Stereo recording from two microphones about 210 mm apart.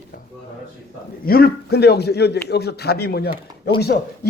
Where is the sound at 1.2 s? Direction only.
45° left (ahead or behind).